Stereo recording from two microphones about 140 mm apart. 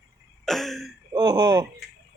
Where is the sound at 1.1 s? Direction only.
30° right (ahead or behind).